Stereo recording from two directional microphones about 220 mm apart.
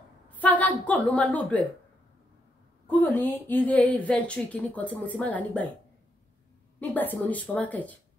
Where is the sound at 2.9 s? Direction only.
10° left (ahead or behind).